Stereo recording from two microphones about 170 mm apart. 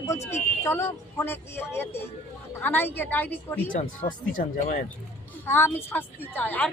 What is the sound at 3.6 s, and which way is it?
Speech, 50° left (ahead or behind).